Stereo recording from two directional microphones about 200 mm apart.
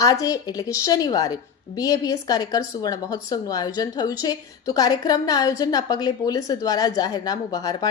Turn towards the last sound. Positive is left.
turn(degrees=20)  # may be behind; listen again after turning